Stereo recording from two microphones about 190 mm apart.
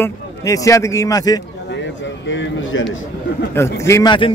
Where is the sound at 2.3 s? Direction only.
75° left (ahead or behind).